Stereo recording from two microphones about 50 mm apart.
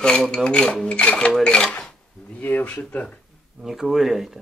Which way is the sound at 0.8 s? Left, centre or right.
Left.